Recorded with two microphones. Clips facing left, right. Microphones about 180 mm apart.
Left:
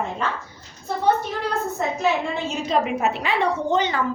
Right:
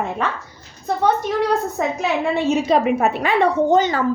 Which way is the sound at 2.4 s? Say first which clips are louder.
Right 8 dB; 65° right (ahead or behind).